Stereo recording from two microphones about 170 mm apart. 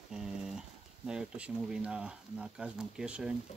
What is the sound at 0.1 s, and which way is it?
Speech, 5° right (ahead or behind).